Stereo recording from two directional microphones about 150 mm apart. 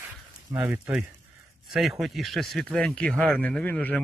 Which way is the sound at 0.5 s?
10° right (ahead or behind).